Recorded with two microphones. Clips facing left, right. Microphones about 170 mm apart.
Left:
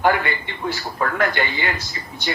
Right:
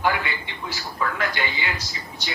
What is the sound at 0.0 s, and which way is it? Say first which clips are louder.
A man's voice: left 5 dB; 55° left (ahead or behind).